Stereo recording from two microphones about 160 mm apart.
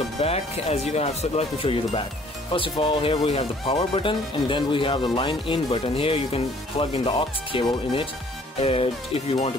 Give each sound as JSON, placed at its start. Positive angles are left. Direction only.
{"t": 0.2, "sound": "speech", "side_deg": 40}